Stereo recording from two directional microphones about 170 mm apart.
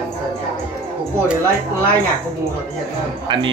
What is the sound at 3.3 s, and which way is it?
Speech, 30° right (ahead or behind).